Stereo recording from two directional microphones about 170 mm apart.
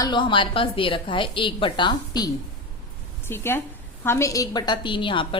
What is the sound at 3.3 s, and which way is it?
A woman's voice, 15° left (ahead or behind).